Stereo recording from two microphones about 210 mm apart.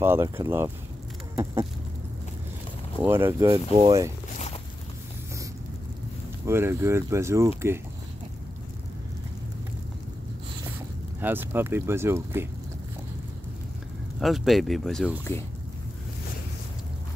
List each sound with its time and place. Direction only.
0.0 s speech: 10° right (ahead or behind)
1.3 s a sound: 15° right (ahead or behind)
3.0 s speech: 10° right (ahead or behind)
4.3 s a sound: 30° left (ahead or behind)
6.4 s speech: 10° right (ahead or behind)
11.1 s speech: 10° right (ahead or behind)
14.2 s speech: centre (ahead or behind)